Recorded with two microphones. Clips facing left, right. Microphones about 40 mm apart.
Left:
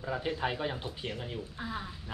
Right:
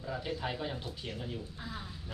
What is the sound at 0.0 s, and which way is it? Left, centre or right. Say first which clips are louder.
Speech: left 4 dB; left.